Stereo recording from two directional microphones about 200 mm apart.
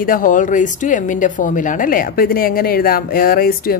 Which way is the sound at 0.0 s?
45° left (ahead or behind).